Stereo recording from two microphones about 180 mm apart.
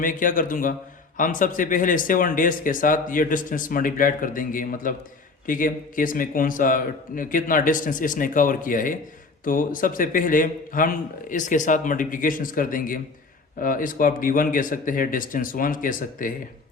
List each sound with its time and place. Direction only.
0.0 s a man's voice: 50° left (ahead or behind)